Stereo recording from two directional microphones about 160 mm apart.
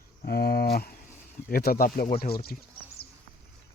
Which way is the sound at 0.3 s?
80° left.